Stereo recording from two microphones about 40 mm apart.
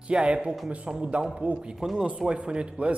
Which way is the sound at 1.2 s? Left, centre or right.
Centre.